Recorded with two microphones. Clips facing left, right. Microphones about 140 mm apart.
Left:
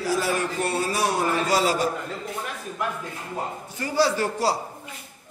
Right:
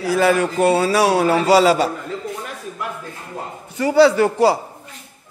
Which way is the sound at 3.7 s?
85° right.